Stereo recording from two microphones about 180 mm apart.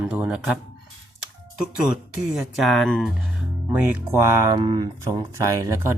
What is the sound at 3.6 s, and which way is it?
Speech, 10° right (ahead or behind).